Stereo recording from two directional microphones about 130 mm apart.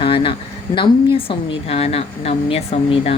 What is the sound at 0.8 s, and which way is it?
A woman's voice, 40° left (ahead or behind).